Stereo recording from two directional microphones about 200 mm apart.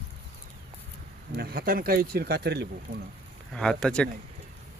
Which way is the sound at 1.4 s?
50° right (ahead or behind).